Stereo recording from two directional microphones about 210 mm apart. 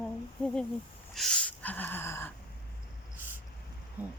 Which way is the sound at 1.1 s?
Centre (ahead or behind).